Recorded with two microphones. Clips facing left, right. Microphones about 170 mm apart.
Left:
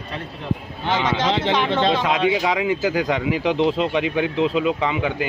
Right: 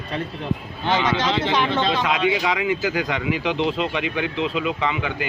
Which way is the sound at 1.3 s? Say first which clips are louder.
Left 1 dB; 25° left (ahead or behind).